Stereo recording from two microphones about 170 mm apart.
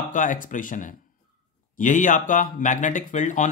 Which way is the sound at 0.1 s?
50° left (ahead or behind).